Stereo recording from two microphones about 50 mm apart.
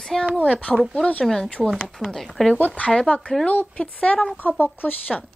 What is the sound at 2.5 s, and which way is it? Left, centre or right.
Speech, left.